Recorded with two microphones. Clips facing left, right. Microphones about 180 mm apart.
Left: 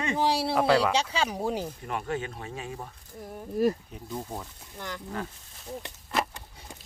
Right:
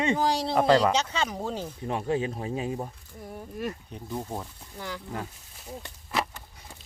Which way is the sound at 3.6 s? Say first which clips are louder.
Left 9 dB; 40° left (ahead or behind).